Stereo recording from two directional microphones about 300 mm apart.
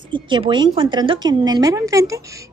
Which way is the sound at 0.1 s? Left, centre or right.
Centre.